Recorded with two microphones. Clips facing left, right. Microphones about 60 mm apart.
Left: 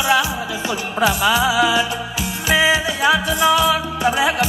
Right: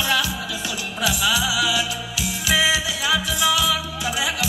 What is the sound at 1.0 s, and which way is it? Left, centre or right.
Music, left.